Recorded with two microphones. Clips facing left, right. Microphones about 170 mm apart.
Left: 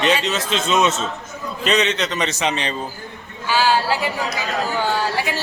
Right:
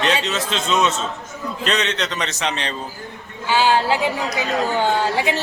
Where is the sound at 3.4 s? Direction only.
20° right (ahead or behind).